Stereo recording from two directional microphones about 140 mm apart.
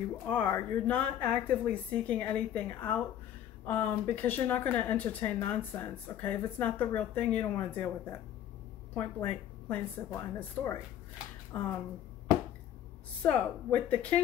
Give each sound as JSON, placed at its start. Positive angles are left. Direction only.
{"t": 0.3, "sound": "speech", "side_deg": 15}
{"t": 8.9, "sound": "speech", "side_deg": 10}
{"t": 13.2, "sound": "speech", "side_deg": 10}